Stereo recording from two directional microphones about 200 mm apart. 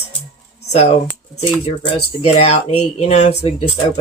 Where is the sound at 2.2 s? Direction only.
30° left (ahead or behind).